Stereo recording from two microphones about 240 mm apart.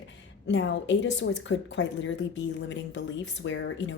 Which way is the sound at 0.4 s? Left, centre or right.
Left.